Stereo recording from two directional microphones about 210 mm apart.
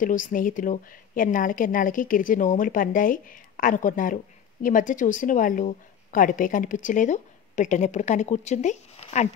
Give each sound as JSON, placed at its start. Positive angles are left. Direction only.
{"t": 0.0, "sound": "a woman's voice", "side_deg": 40}